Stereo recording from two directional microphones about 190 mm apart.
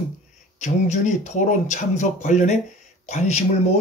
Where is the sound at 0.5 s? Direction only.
40° left (ahead or behind).